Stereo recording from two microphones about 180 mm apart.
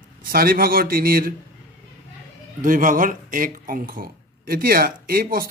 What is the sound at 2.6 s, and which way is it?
A man's voice, 50° right (ahead or behind).